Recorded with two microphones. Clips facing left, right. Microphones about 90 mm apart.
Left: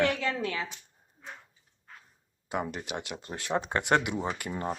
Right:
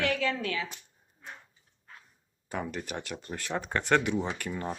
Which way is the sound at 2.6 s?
20° left (ahead or behind).